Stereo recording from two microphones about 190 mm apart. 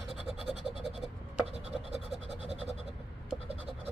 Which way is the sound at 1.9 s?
35° right (ahead or behind).